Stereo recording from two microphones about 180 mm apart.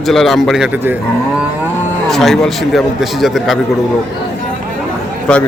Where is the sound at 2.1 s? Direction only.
Centre (ahead or behind).